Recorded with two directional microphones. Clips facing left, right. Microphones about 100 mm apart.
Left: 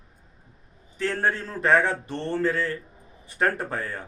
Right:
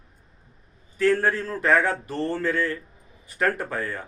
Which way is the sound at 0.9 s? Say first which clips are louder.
Right 5 dB; 25° left (ahead or behind).